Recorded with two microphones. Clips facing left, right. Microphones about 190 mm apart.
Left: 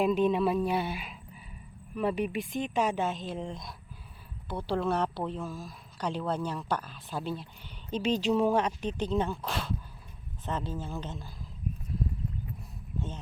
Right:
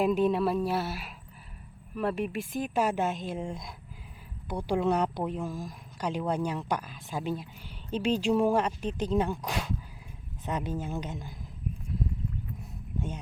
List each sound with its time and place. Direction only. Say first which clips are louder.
0.0 s speech: even; 5° right (ahead or behind)